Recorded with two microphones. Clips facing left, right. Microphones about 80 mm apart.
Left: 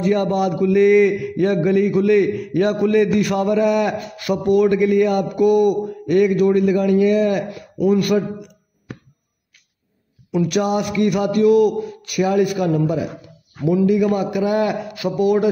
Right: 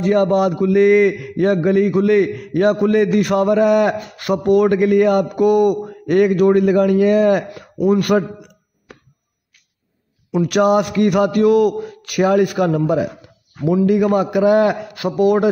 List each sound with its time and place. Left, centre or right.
0.0 s mantra: right
10.5 s a man's voice: right
14.1 s mantra: right